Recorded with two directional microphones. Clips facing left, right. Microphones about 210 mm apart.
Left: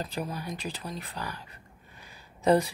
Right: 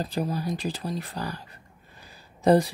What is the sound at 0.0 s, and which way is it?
Speech, 35° right (ahead or behind).